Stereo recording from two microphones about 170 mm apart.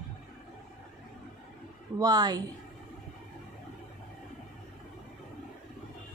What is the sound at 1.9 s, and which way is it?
Speech, 20° right (ahead or behind).